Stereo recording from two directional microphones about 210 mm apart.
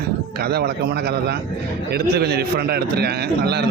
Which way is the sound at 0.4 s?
50° right (ahead or behind).